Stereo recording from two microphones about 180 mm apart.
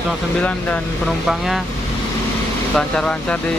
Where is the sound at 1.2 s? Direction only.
Centre (ahead or behind).